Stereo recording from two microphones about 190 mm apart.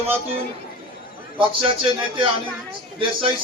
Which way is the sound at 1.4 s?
25° right (ahead or behind).